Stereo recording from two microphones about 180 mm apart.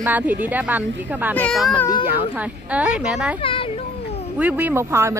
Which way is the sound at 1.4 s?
Centre (ahead or behind).